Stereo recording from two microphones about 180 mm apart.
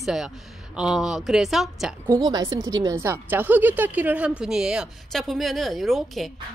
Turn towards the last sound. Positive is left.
turn(degrees=0)  # may be behind; listen again after turning